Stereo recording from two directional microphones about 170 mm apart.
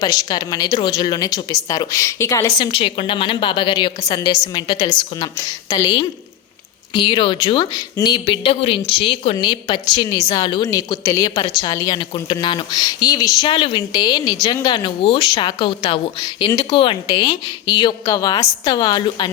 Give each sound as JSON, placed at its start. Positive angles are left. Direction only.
{"t": 0.0, "sound": "a woman's voice", "side_deg": 25}
{"t": 2.6, "sound": "a woman's voice", "side_deg": 30}